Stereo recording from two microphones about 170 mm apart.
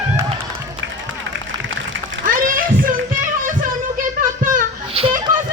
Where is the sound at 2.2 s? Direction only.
55° right (ahead or behind).